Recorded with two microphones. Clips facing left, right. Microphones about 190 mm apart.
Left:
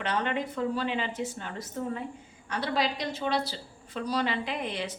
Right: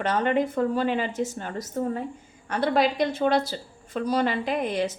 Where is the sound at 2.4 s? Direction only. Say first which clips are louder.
Right 7 dB; 55° right (ahead or behind).